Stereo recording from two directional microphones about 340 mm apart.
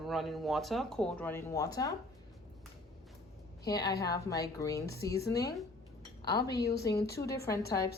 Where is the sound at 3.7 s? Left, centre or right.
Centre.